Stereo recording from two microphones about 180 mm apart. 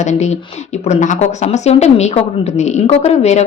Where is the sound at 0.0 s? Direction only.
40° left (ahead or behind).